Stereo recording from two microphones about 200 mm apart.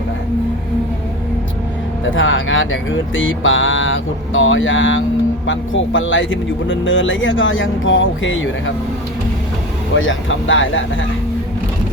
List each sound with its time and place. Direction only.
2.0 s speech: 75° left (ahead or behind)
9.9 s speech: 70° left (ahead or behind)